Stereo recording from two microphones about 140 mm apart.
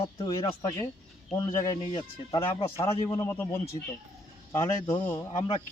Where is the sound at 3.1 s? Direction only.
20° left (ahead or behind).